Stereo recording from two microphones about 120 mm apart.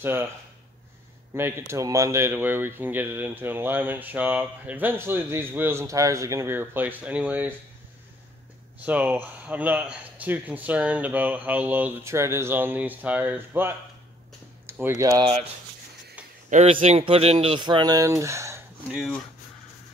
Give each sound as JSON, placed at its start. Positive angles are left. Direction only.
{"t": 0.0, "sound": "speech", "side_deg": -20}
{"t": 1.7, "sound": "speech", "side_deg": -25}
{"t": 8.8, "sound": "speech", "side_deg": -15}
{"t": 16.6, "sound": "speech", "side_deg": -55}
{"t": 17.6, "sound": "speech", "side_deg": -40}
{"t": 18.9, "sound": "speech", "side_deg": -5}